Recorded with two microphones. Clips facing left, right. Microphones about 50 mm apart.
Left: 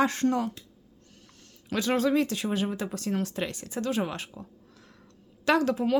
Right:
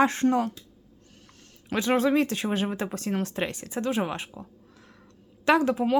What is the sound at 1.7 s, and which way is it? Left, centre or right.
A woman's voice, right.